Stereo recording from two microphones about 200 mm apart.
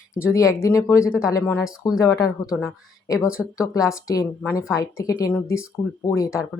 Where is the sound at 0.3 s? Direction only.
15° left (ahead or behind).